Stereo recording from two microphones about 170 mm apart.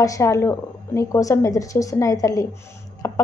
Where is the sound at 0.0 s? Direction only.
20° left (ahead or behind).